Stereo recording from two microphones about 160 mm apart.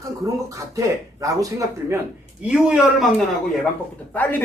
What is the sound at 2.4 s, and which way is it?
Speech, 5° right (ahead or behind).